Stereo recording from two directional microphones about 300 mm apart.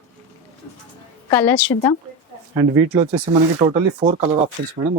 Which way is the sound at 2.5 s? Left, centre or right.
Centre.